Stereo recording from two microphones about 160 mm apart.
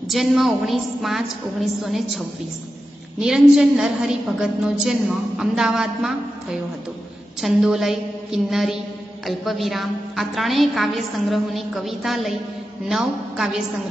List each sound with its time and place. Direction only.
0.1 s a woman's voice: centre (ahead or behind)